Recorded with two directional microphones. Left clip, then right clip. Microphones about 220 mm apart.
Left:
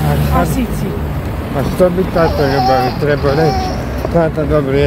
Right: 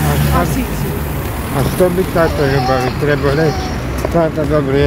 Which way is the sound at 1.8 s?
5° left (ahead or behind).